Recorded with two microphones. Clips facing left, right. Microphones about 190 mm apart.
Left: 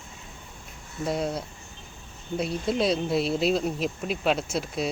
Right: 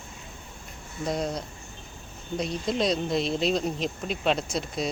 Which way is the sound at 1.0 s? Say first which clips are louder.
Left 1 dB; 5° left (ahead or behind).